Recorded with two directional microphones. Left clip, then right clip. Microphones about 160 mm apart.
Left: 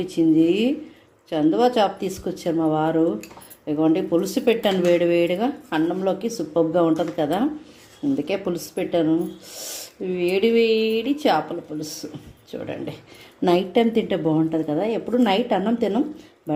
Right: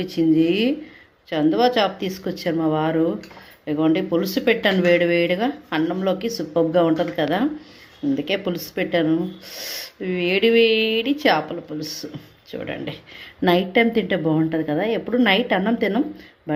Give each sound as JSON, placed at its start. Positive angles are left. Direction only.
{"t": 0.0, "sound": "speech", "side_deg": 0}